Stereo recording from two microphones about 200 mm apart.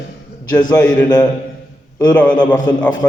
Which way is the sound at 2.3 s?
20° left (ahead or behind).